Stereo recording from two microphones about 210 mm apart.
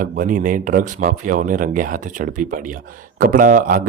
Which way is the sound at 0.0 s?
40° right (ahead or behind).